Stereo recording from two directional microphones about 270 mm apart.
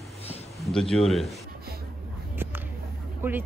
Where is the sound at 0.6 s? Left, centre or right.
Centre.